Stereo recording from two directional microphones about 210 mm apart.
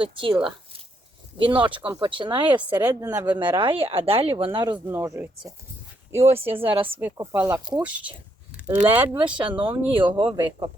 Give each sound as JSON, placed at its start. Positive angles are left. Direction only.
{"t": 0.0, "sound": "speech", "side_deg": -25}
{"t": 1.4, "sound": "speech", "side_deg": -25}
{"t": 2.7, "sound": "speech", "side_deg": -10}
{"t": 6.6, "sound": "speech", "side_deg": -25}
{"t": 6.8, "sound": "speech", "side_deg": -10}
{"t": 7.8, "sound": "speech", "side_deg": -5}
{"t": 9.2, "sound": "speech", "side_deg": -20}